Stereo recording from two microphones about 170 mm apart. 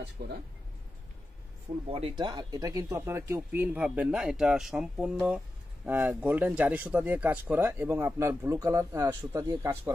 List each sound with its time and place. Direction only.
0.2 s speech: 55° right (ahead or behind)
1.9 s speech: 35° right (ahead or behind)